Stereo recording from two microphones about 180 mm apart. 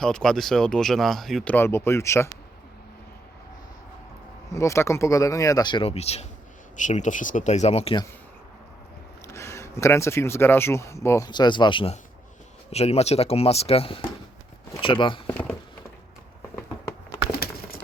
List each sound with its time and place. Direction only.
0.0 s speech: 5° left (ahead or behind)
4.5 s speech: 15° left (ahead or behind); by 8.0 s 35° left (ahead or behind)
9.2 s speech: 15° left (ahead or behind)
15.3 s speech: 10° left (ahead or behind)
17.4 s a sound: 60° left (ahead or behind)